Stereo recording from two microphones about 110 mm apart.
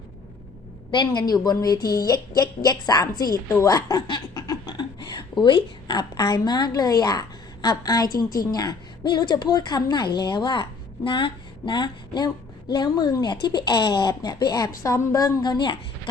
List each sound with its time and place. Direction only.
0.9 s a woman's voice: 45° left (ahead or behind)
15.4 s speech: 45° left (ahead or behind)